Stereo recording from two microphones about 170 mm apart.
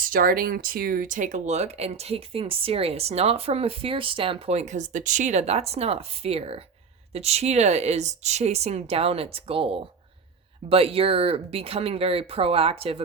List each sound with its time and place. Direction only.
0.1 s speech: 55° right (ahead or behind); by 13.0 s 35° right (ahead or behind)